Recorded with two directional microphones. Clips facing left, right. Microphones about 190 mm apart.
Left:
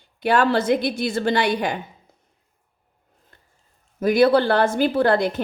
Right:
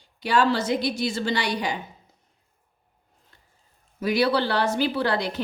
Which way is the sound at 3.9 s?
50° left (ahead or behind).